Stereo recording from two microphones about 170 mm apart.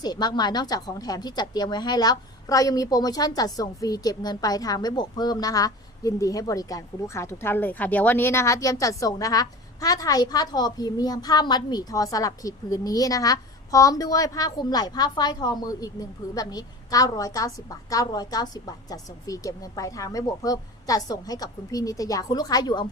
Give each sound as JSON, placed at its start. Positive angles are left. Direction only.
{"t": 0.0, "sound": "a woman's voice", "side_deg": 25}